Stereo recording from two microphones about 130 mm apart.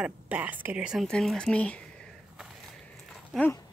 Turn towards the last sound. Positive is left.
turn(degrees=0)  # may be behind; listen again after turning